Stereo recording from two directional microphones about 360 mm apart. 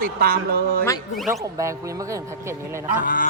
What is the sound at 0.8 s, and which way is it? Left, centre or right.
Speech, centre.